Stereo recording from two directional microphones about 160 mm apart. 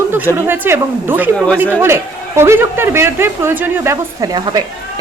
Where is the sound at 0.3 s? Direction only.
15° right (ahead or behind).